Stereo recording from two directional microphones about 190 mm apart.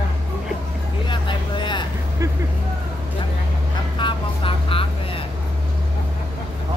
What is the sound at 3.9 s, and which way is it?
Vehicle, 25° left (ahead or behind).